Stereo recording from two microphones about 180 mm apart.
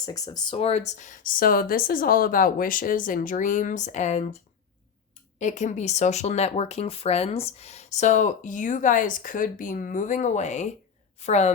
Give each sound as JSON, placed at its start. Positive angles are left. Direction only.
{"t": 0.0, "sound": "speech", "side_deg": 20}
{"t": 0.6, "sound": "speech", "side_deg": 35}
{"t": 5.4, "sound": "speech", "side_deg": 45}